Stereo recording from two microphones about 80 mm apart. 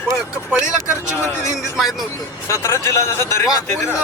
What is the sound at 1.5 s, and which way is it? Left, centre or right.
Speech, centre.